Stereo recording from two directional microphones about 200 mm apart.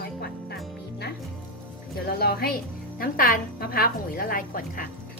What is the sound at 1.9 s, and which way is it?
A woman's voice, 50° left (ahead or behind).